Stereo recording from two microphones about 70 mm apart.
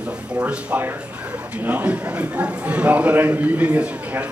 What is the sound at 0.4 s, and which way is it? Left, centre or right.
A man's voice, centre.